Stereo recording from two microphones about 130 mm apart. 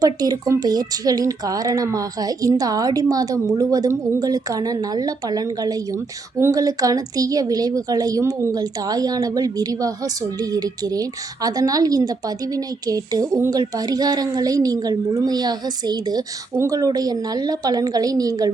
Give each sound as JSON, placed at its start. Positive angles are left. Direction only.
{"t": 0.0, "sound": "speech", "side_deg": -30}